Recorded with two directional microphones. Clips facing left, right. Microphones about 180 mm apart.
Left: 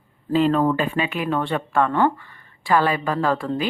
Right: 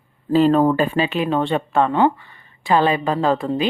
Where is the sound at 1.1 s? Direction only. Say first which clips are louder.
Right 4 dB; 25° right (ahead or behind).